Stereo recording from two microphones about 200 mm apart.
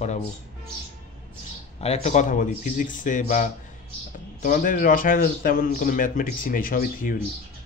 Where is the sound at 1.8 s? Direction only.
35° left (ahead or behind).